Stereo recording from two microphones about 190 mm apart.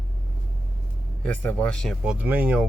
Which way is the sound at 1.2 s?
5° left (ahead or behind).